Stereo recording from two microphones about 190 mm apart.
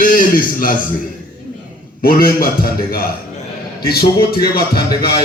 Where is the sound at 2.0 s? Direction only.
50° left (ahead or behind).